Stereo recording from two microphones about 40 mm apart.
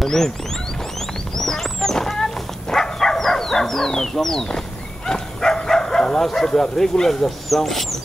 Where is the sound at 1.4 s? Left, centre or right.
Centre.